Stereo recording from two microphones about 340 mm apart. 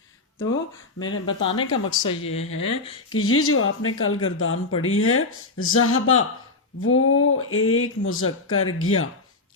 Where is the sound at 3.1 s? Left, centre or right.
Left.